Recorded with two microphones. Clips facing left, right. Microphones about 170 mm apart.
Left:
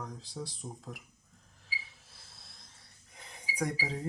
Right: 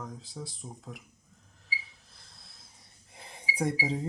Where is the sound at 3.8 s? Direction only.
20° right (ahead or behind).